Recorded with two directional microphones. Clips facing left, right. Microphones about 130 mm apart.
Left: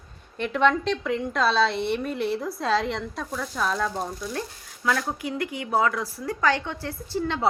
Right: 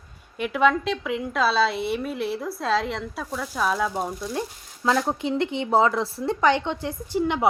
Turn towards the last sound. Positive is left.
turn(degrees=-15)  # may be behind; listen again after turning